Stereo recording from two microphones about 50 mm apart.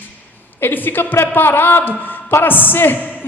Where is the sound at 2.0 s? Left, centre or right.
Left.